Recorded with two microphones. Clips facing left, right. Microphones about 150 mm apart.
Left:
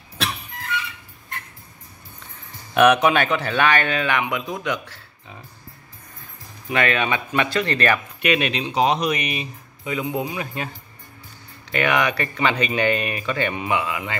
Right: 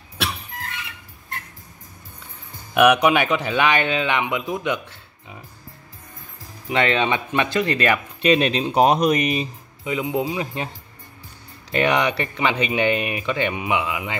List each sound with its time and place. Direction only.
2.7 s speech: 10° right (ahead or behind)
6.7 s speech: 20° right (ahead or behind)
8.2 s speech: 35° right (ahead or behind)
9.8 s speech: 20° right (ahead or behind)
11.7 s speech: 30° right (ahead or behind)